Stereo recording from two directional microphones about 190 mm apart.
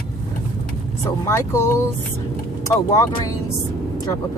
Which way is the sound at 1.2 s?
15° left (ahead or behind).